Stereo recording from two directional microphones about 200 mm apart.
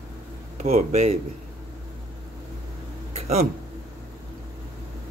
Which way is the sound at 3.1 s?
30° right (ahead or behind).